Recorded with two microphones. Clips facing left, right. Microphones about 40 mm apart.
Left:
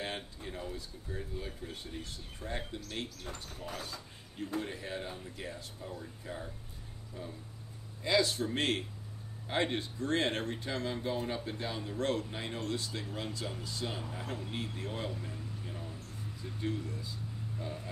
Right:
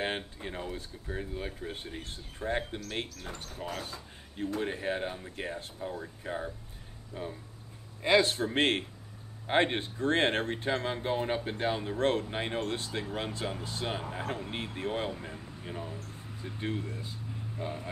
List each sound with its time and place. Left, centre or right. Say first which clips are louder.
0.0 s speech: right 6 dB; right
3.8 s speech: right 2 dB; right